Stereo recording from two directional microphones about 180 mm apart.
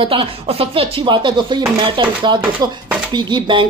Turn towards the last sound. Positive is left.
turn(degrees=-25)  # may be behind; listen again after turning